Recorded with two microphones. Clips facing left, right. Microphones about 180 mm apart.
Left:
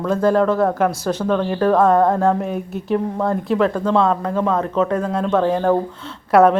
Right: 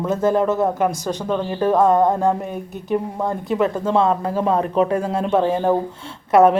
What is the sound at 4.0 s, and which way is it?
Speech, 25° right (ahead or behind).